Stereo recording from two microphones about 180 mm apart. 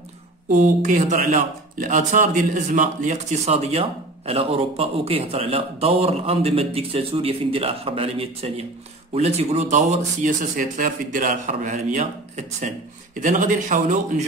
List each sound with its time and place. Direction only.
0.5 s speech: 45° right (ahead or behind)